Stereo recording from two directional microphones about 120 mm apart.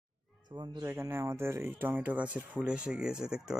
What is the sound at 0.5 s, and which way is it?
Speech, 35° right (ahead or behind).